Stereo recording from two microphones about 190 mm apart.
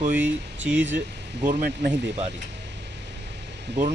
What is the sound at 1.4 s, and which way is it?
Speech, 50° right (ahead or behind).